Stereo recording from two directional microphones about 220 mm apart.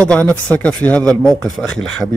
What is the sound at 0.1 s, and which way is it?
Speech, 5° left (ahead or behind).